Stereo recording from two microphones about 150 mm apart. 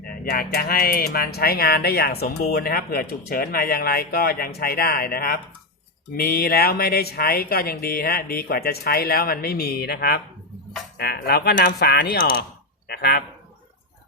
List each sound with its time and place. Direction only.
0.0 s speech: 80° left
12.9 s speech: 90° left